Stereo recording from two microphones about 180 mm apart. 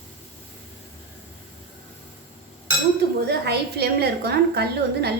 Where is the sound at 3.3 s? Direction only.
70° right (ahead or behind).